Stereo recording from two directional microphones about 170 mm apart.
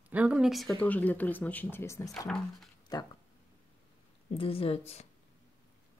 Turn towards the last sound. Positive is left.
turn(degrees=40)  # may be behind; listen again after turning